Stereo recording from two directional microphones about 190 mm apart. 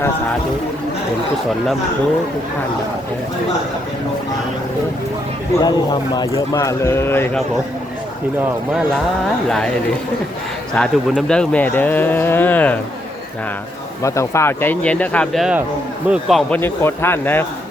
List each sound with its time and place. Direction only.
5.6 s speech: 20° left (ahead or behind)
9.5 s speech: 5° left (ahead or behind)
10.8 s speech: 5° left (ahead or behind)
14.0 s speech: 15° left (ahead or behind); by 16.4 s 5° right (ahead or behind)
16.5 s speech: 10° left (ahead or behind)